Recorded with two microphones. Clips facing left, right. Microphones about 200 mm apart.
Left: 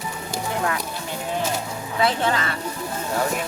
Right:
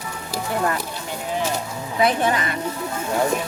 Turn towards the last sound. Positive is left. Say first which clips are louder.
# right 2 dB
turn(degrees=-15)  # may be behind; listen again after turning